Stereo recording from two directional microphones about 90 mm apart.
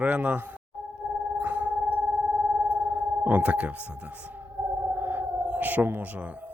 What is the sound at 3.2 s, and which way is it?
Speech, 15° right (ahead or behind).